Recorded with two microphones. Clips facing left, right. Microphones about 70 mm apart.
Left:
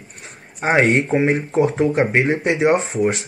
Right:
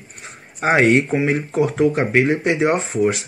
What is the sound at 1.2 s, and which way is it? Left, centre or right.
Speech, left.